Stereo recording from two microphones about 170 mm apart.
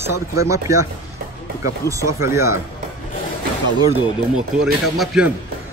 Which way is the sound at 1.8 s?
20° right (ahead or behind).